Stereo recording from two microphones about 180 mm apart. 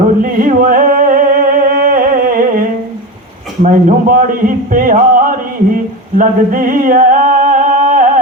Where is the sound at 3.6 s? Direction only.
50° right (ahead or behind).